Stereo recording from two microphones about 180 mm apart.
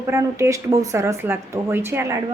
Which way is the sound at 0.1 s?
15° right (ahead or behind).